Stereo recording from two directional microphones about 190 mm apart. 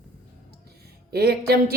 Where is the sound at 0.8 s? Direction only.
55° right (ahead or behind).